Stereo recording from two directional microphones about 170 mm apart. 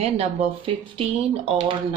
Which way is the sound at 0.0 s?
35° right (ahead or behind).